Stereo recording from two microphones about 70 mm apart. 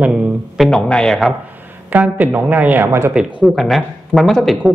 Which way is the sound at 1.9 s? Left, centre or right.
Right.